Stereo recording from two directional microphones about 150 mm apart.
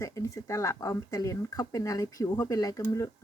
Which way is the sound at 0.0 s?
20° left (ahead or behind).